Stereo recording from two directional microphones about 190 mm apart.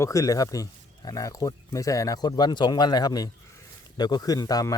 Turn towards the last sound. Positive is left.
turn(degrees=20)  # may be behind; listen again after turning